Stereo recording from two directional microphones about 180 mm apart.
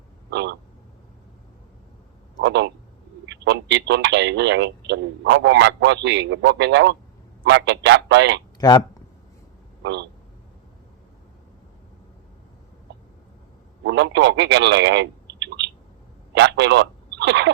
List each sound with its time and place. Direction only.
0.3 s speech: 70° right (ahead or behind)
2.4 s speech: 75° right (ahead or behind)
8.5 s speech: 20° left (ahead or behind)
9.8 s speech: 70° right (ahead or behind)
13.8 s speech: 80° right